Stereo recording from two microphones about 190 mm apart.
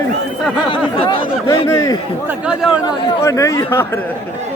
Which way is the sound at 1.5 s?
15° left (ahead or behind).